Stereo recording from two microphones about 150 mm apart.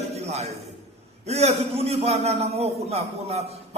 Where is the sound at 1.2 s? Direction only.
45° right (ahead or behind).